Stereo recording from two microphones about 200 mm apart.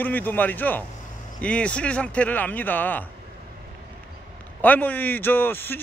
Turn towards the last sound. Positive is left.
turn(degrees=10)  # may be behind; listen again after turning